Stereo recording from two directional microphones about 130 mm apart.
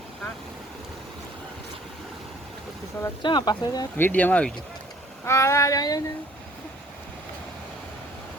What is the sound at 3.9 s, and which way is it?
Speech, 15° left (ahead or behind).